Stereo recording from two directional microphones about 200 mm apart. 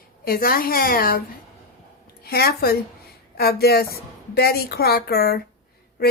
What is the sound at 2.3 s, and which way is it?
A woman's voice, 50° left (ahead or behind).